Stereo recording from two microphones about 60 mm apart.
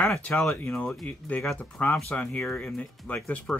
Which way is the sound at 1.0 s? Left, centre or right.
Left.